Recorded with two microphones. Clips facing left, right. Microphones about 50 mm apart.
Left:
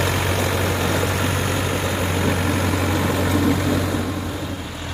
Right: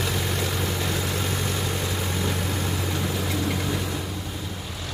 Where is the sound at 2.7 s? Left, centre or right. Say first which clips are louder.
Left 7 dB; left.